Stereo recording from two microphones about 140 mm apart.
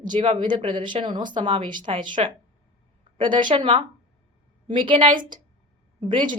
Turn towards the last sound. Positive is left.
turn(degrees=-35)  # may be behind; listen again after turning